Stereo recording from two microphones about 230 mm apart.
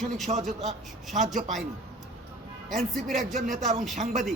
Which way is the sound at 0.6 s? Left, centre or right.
Centre.